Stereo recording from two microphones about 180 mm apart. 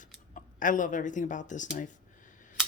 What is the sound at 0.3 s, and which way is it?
Speech, 45° left (ahead or behind).